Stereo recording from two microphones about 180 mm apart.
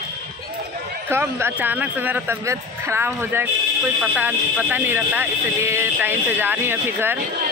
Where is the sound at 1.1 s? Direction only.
10° right (ahead or behind).